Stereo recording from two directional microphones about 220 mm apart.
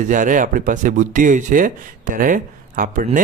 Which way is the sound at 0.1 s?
35° right (ahead or behind).